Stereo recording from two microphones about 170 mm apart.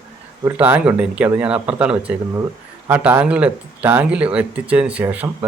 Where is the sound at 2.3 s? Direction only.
20° right (ahead or behind).